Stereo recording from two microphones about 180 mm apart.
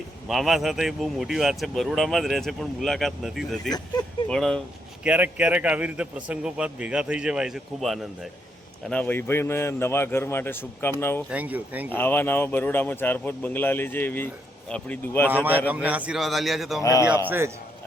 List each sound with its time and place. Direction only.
0.3 s speech: centre (ahead or behind)
5.0 s a man's voice: 10° right (ahead or behind)
8.9 s speech: 10° left (ahead or behind)
11.3 s a man's voice: 10° right (ahead or behind)
11.9 s speech: 10° left (ahead or behind)
15.7 s speech: 10° right (ahead or behind)
16.8 s speech: 15° left (ahead or behind)
17.2 s a man's voice: 15° right (ahead or behind)